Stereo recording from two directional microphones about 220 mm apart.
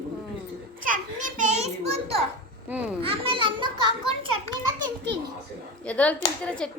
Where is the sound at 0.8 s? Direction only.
35° right (ahead or behind).